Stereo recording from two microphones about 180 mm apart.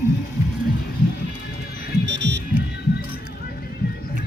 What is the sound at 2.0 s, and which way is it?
Music, 80° right.